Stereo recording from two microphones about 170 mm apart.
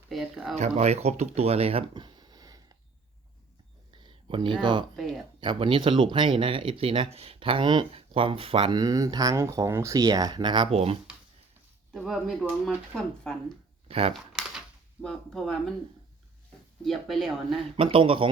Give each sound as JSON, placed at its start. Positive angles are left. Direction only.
{"t": 0.1, "sound": "speech", "side_deg": -5}
{"t": 0.5, "sound": "speech", "side_deg": -40}
{"t": 3.9, "sound": "a sound", "side_deg": -30}
{"t": 4.6, "sound": "speech", "side_deg": -30}
{"t": 11.9, "sound": "speech", "side_deg": 0}
{"t": 13.8, "sound": "speech", "side_deg": -35}
{"t": 14.1, "sound": "typewriter", "side_deg": -5}
{"t": 15.0, "sound": "speech", "side_deg": 0}
{"t": 16.8, "sound": "speech", "side_deg": 0}
{"t": 17.7, "sound": "a man's voice", "side_deg": -30}